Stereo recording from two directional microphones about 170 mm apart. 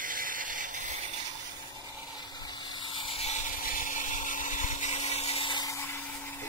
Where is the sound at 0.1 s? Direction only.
55° right (ahead or behind).